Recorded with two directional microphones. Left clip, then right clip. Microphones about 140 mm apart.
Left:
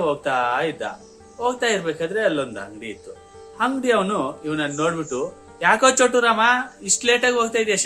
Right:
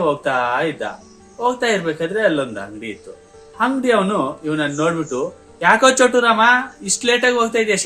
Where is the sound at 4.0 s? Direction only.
35° left (ahead or behind).